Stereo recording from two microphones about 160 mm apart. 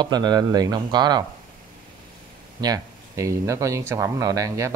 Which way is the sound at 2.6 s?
20° right (ahead or behind).